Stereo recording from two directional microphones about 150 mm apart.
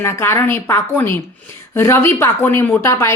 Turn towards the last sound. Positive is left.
turn(degrees=15)  # may be behind; listen again after turning